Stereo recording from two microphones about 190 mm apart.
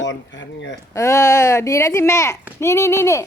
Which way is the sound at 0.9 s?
15° left (ahead or behind).